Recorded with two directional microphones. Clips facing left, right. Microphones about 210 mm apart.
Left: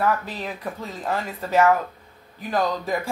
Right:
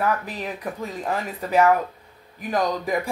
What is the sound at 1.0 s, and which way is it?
Speech, 15° right (ahead or behind).